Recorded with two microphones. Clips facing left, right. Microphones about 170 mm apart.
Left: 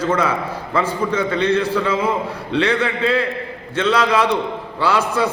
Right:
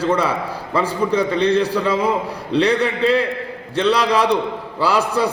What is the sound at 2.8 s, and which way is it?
A man's voice, 35° right (ahead or behind).